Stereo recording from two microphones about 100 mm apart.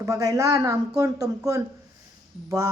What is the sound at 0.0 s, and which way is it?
A woman's voice, 35° right (ahead or behind).